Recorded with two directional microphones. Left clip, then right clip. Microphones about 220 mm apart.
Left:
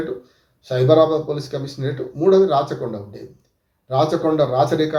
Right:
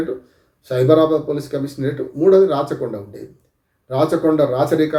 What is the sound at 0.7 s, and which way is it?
A man's voice, 5° right (ahead or behind).